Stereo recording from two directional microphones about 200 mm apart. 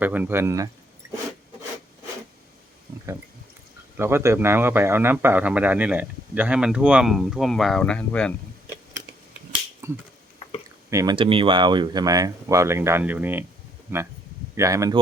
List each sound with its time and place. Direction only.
0.0 s speech: 10° right (ahead or behind)
3.9 s speech: 10° right (ahead or behind); by 8.3 s 5° left (ahead or behind)
9.8 s finger snapping: 15° right (ahead or behind)
10.8 s speech: 20° right (ahead or behind)